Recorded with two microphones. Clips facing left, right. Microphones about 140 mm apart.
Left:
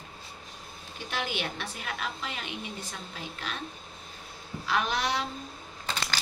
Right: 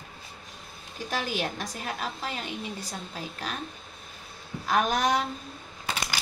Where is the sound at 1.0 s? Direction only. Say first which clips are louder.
Right 3 dB; 40° right (ahead or behind).